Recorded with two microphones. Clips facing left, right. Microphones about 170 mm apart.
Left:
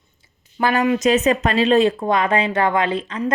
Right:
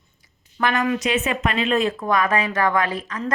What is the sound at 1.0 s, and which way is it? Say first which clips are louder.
A woman's voice: left 6 dB; 40° left (ahead or behind).